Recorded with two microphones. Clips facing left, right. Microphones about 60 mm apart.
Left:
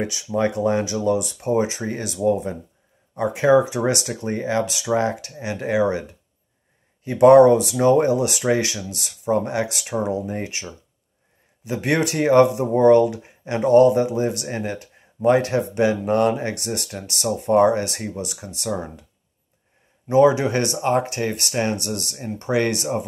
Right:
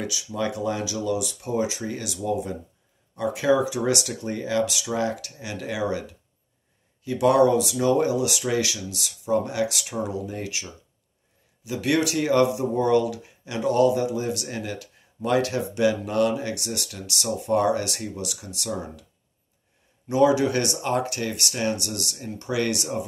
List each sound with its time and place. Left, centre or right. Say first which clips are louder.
0.0 s speech: left 6 dB; left
20.1 s speech: left 4 dB; left